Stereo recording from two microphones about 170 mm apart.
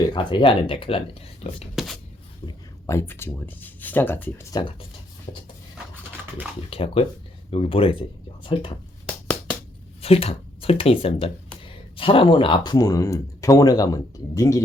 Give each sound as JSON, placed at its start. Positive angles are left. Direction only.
{"t": 0.1, "sound": "speech", "side_deg": 30}
{"t": 1.8, "sound": "speech", "side_deg": 0}
{"t": 2.8, "sound": "speech", "side_deg": 15}
{"t": 6.7, "sound": "speech", "side_deg": 35}
{"t": 10.0, "sound": "speech", "side_deg": 35}